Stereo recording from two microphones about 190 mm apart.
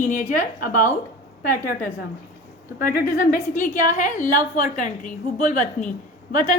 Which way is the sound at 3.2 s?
45° left (ahead or behind).